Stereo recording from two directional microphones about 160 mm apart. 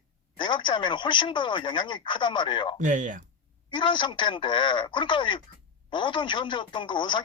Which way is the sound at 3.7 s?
30° left (ahead or behind).